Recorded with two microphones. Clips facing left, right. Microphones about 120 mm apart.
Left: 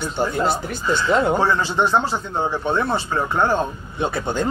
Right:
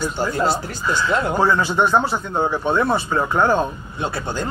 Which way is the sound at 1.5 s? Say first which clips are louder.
Right 2 dB; 15° right (ahead or behind).